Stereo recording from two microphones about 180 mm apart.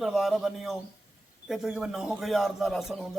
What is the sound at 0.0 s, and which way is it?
A man's voice, centre (ahead or behind).